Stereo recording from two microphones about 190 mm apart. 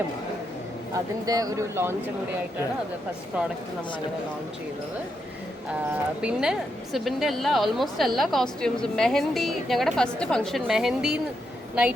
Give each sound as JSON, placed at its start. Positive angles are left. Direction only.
{"t": 0.9, "sound": "speech", "side_deg": -20}
{"t": 6.2, "sound": "a woman's voice", "side_deg": -5}